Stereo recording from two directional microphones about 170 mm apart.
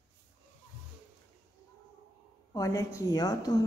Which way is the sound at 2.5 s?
20° left (ahead or behind).